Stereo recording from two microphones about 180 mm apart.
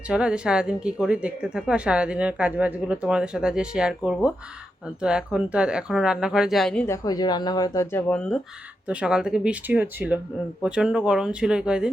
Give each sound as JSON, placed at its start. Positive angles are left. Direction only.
{"t": 0.1, "sound": "speech", "side_deg": -5}
{"t": 6.8, "sound": "speech", "side_deg": 20}
{"t": 8.9, "sound": "speech", "side_deg": -5}